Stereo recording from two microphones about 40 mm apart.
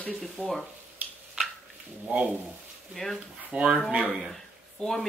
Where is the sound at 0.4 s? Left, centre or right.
Right.